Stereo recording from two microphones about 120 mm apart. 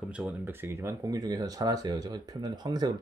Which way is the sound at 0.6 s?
25° right (ahead or behind).